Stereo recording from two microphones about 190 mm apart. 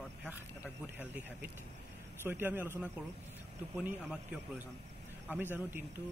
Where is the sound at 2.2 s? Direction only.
10° right (ahead or behind).